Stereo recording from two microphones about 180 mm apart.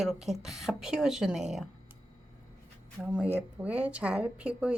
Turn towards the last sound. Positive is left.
turn(degrees=-5)  # may be behind; listen again after turning